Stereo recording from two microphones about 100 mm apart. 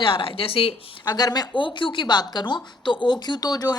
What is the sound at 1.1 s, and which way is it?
Speech, 40° left (ahead or behind).